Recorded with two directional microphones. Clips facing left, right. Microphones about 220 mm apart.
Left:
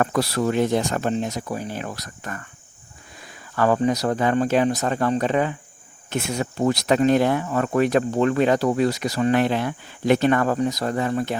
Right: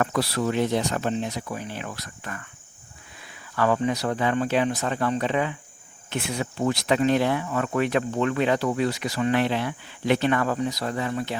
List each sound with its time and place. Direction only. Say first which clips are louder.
0.0 s speech: left 3 dB; 45° left (ahead or behind)